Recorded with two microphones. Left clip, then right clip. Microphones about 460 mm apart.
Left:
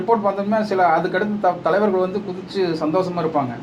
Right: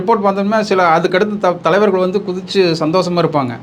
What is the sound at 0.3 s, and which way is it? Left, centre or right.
Speech, right.